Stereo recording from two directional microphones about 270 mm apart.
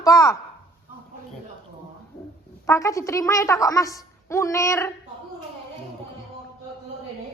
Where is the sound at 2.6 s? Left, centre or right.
Centre.